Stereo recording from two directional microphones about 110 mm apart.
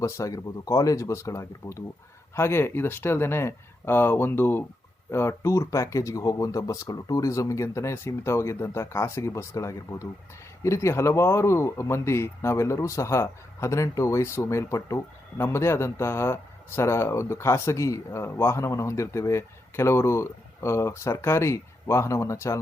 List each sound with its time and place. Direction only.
0.0 s speech: 30° left (ahead or behind)